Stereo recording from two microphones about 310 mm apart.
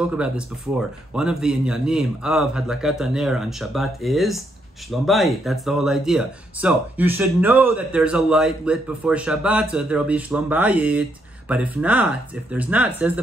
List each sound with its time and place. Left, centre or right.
0.7 s speech: centre